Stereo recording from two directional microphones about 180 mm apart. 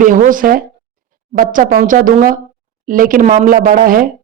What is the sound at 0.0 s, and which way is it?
Speech, 50° right (ahead or behind).